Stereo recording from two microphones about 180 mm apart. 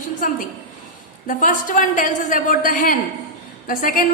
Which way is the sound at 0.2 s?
50° left (ahead or behind).